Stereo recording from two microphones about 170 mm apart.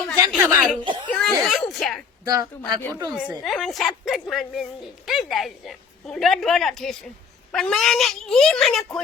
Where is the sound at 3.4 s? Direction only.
Centre (ahead or behind).